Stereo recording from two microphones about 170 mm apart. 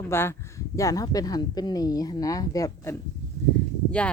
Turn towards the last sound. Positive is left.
turn(degrees=5)  # may be behind; listen again after turning